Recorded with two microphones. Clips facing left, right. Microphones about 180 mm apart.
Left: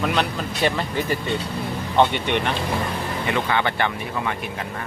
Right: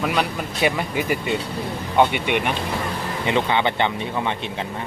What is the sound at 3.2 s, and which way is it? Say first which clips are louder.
Speech: right 3 dB; 20° right (ahead or behind).